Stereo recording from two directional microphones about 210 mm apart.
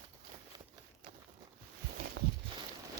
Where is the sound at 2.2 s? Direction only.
60° right (ahead or behind).